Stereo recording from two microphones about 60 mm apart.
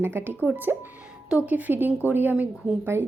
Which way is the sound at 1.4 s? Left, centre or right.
Right.